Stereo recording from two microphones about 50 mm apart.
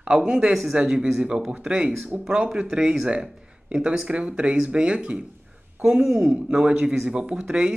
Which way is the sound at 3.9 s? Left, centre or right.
Centre.